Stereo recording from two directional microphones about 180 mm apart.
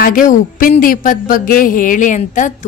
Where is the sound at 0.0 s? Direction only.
50° left (ahead or behind).